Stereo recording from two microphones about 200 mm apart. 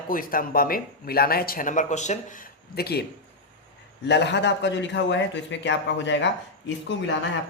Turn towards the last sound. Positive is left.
turn(degrees=65)  # may be behind; listen again after turning